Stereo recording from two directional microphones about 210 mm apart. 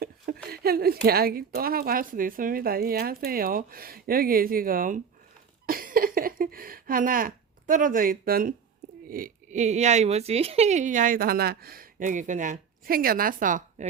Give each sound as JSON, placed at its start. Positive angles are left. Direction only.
{"t": 0.5, "sound": "a woman's voice", "side_deg": -45}